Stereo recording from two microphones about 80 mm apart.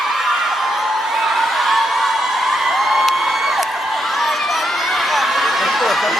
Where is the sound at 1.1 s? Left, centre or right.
Centre.